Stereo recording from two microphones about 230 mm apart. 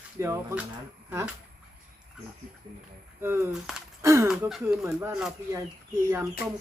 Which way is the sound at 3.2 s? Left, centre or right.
Centre.